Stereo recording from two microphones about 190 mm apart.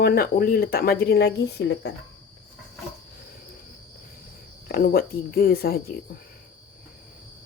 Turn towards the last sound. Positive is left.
turn(degrees=55)  # may be behind; listen again after turning